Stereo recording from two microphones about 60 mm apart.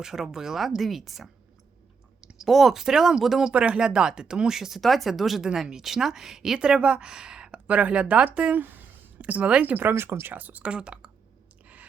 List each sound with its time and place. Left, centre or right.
0.0 s a woman's voice: centre
3.5 s a woman's voice: centre
9.9 s speech: right
10.3 s speech: right